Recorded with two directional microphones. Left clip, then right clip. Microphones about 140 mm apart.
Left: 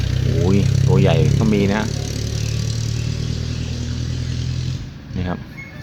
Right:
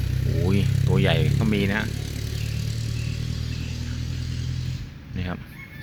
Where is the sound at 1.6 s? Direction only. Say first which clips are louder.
Left 5 dB; 20° left (ahead or behind).